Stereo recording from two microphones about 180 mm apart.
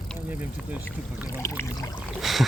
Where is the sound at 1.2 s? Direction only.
15° left (ahead or behind).